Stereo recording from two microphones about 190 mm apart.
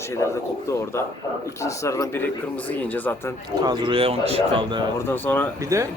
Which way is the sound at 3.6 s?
25° right (ahead or behind).